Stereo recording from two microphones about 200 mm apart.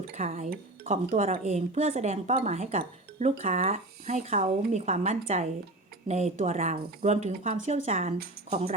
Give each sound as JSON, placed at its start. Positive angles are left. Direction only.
{"t": 0.1, "sound": "speech", "side_deg": -35}